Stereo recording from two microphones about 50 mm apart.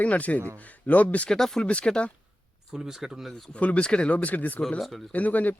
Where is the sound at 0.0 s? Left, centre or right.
Left.